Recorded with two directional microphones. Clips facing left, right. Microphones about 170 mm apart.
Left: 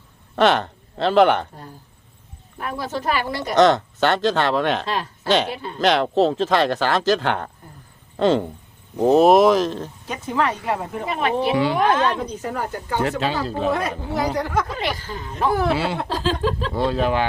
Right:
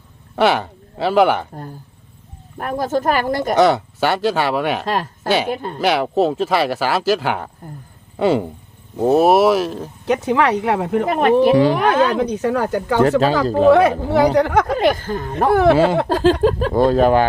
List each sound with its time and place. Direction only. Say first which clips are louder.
0.3 s speech: right 1 dB; 10° right (ahead or behind)
2.6 s speech: right 7 dB; 50° right (ahead or behind)
3.5 s speech: even; 10° right (ahead or behind)
4.9 s speech: right 4 dB; 45° right (ahead or behind)
5.8 s speech: even; 10° right (ahead or behind)
10.1 s speech: right 7 dB; 75° right (ahead or behind); by 11.8 s 45° right (ahead or behind)
12.2 s speech: right 8 dB; 75° right (ahead or behind)
13.0 s speech: right 8 dB; 40° right (ahead or behind)
13.7 s speech: right 14 dB; 70° right (ahead or behind)
14.7 s speech: right 10 dB; 50° right (ahead or behind); by 15.7 s 65° right (ahead or behind)
15.7 s speech: right 8 dB; 45° right (ahead or behind)